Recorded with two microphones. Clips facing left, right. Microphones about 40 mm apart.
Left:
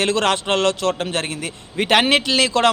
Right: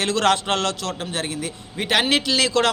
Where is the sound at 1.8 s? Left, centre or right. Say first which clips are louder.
Left 4 dB; left.